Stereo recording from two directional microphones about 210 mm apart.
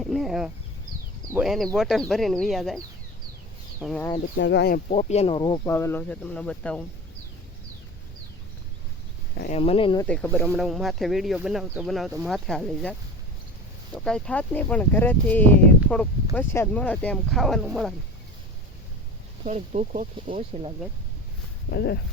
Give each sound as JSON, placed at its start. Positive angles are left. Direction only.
{"t": 0.0, "sound": "speech", "side_deg": 0}
{"t": 4.4, "sound": "speech", "side_deg": 55}
{"t": 4.9, "sound": "speech", "side_deg": 35}
{"t": 9.5, "sound": "speech", "side_deg": 30}
{"t": 10.1, "sound": "speech", "side_deg": 10}
{"t": 19.5, "sound": "speech", "side_deg": -35}
{"t": 20.3, "sound": "speech", "side_deg": -25}
{"t": 21.7, "sound": "speech", "side_deg": 50}